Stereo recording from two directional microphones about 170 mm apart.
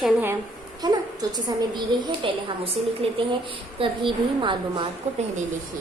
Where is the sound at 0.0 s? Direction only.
10° right (ahead or behind).